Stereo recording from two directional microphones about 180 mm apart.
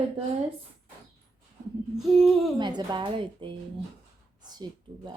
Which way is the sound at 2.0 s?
Centre (ahead or behind).